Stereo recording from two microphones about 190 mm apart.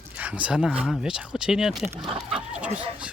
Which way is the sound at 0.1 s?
5° right (ahead or behind).